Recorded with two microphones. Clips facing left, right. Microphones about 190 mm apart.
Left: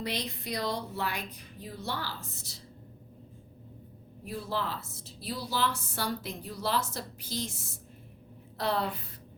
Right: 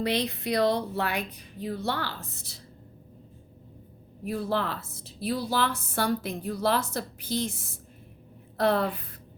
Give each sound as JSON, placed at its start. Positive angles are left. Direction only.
{"t": 0.0, "sound": "a woman's voice", "side_deg": -60}
{"t": 4.3, "sound": "a woman's voice", "side_deg": -60}